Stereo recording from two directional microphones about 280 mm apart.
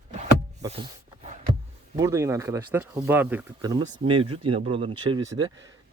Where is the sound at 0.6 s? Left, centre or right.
Centre.